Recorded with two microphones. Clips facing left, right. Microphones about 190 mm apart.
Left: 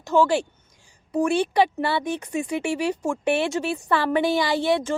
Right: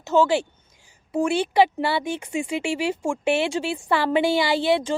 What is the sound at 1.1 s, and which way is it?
Speech, 5° right (ahead or behind).